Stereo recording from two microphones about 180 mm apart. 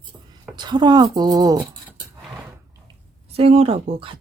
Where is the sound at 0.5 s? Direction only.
25° right (ahead or behind).